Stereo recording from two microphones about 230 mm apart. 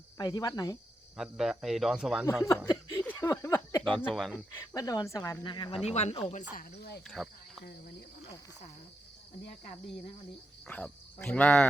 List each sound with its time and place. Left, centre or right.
0.2 s speech: centre
1.1 s speech: centre
3.1 s a sound: centre
3.8 s speech: centre
4.5 s speech: centre
6.5 s speech: left
7.1 s speech: centre
10.7 s speech: centre